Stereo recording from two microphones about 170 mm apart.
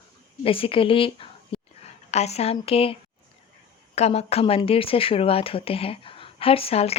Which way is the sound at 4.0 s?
40° left (ahead or behind).